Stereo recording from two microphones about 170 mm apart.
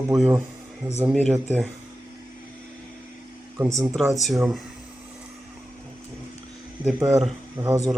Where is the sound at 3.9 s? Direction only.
Centre (ahead or behind).